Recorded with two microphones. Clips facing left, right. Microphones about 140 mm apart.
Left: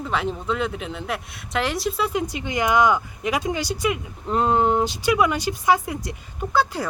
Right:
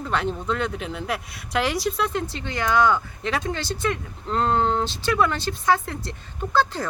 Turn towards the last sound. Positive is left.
turn(degrees=10)  # may be behind; listen again after turning